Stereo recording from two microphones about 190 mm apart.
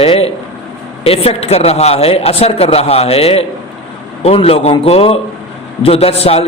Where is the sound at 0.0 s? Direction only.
30° left (ahead or behind).